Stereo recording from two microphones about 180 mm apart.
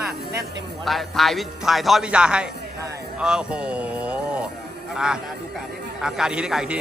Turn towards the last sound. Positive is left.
turn(degrees=-5)  # may be behind; listen again after turning